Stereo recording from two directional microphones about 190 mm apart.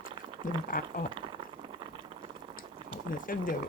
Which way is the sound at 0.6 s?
45° left (ahead or behind).